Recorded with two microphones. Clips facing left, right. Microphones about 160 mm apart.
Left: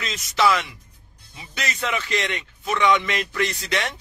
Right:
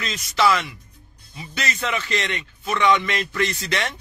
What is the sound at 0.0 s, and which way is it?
Speech, 15° left (ahead or behind).